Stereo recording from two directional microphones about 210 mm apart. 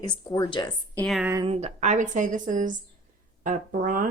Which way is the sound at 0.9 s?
Centre (ahead or behind).